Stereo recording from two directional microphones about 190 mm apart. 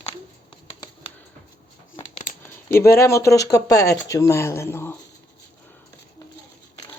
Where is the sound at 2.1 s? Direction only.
40° left (ahead or behind).